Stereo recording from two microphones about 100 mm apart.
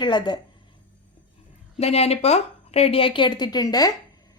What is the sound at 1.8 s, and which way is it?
A woman's voice, 90° left.